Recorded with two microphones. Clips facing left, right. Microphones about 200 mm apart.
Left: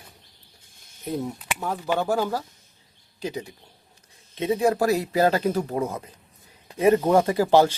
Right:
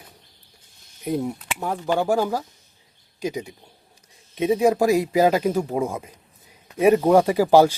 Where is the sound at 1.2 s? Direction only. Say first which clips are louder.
Right 2 dB; 10° right (ahead or behind).